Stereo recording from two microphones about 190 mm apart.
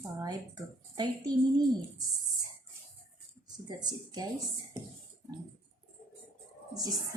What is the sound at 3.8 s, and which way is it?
Speech, 20° right (ahead or behind).